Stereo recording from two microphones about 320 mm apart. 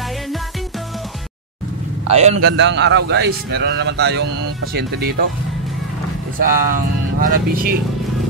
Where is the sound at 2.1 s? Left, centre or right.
Right.